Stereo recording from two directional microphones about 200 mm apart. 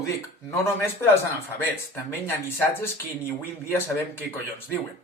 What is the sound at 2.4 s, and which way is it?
Speech, 10° left (ahead or behind).